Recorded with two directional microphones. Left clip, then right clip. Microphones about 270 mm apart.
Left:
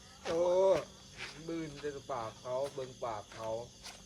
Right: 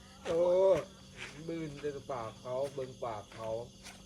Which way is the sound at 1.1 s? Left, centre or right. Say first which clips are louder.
Left 1 dB; left.